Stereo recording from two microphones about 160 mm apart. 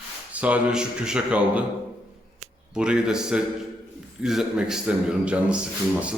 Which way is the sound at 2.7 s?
5° right (ahead or behind).